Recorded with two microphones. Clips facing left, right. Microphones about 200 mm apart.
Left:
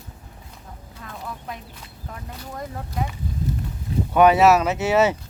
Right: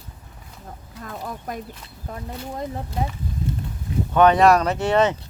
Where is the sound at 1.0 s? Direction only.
45° right (ahead or behind).